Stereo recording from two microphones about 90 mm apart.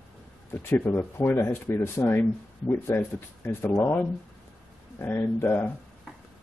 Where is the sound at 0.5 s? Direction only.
25° left (ahead or behind).